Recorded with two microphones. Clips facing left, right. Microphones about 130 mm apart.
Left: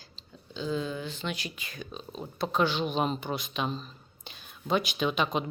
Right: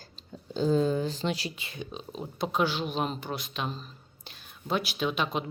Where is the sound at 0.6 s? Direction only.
40° right (ahead or behind).